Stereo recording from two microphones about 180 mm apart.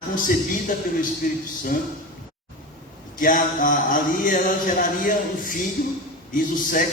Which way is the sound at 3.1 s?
50° left (ahead or behind).